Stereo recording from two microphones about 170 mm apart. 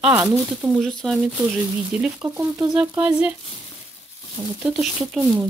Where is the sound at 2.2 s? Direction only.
15° right (ahead or behind).